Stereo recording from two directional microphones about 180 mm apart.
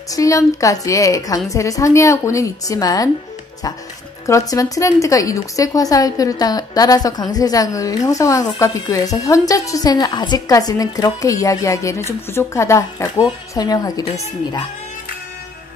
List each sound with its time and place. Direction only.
0.1 s a woman's voice: 20° left (ahead or behind)
4.3 s a woman's voice: 20° left (ahead or behind)